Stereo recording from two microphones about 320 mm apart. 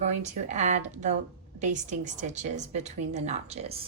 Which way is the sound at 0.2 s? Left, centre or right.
Right.